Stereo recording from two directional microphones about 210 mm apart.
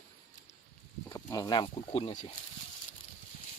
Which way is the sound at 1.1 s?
15° left (ahead or behind).